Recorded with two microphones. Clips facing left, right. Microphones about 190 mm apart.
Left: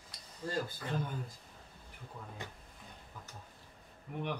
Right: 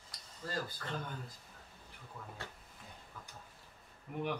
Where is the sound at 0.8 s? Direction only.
10° left (ahead or behind).